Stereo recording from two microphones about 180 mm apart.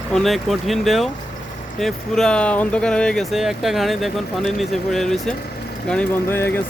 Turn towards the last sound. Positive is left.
turn(degrees=10)  # may be behind; listen again after turning